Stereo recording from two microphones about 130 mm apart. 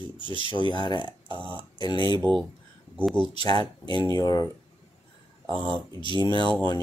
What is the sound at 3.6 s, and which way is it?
Speech, 40° right (ahead or behind).